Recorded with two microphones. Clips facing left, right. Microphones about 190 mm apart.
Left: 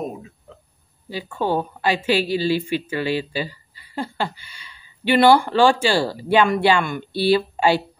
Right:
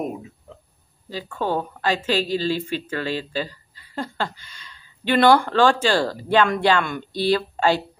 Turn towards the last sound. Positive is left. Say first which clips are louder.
# left 2 dB
turn(degrees=10)  # may be behind; listen again after turning